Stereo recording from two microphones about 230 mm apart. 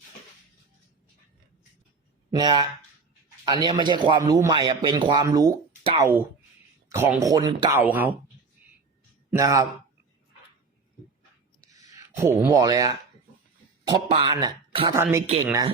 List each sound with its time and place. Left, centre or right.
2.3 s a man's voice: centre
9.4 s speech: centre
11.7 s a man's voice: centre